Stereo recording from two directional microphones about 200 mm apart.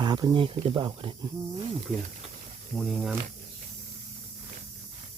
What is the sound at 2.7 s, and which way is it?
Speech, centre (ahead or behind).